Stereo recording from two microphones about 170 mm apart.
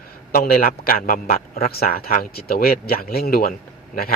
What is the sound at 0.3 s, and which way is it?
A man's voice, 60° left (ahead or behind).